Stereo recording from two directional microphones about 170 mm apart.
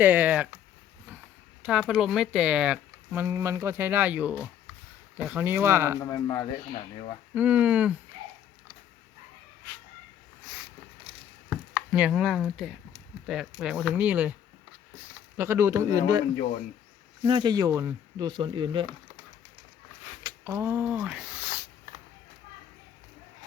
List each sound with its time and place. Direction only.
0.0 s speech: 10° right (ahead or behind)
1.6 s speech: 5° right (ahead or behind)
6.0 s speech: 25° left (ahead or behind)
7.3 s speech: 10° right (ahead or behind)
11.4 s chopping: 5° right (ahead or behind)
13.2 s speech: centre (ahead or behind)
15.4 s speech: 15° right (ahead or behind)
17.2 s speech: 25° right (ahead or behind)
20.2 s speech: 20° right (ahead or behind)